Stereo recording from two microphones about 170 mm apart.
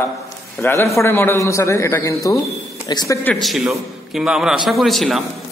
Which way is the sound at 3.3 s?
Centre (ahead or behind).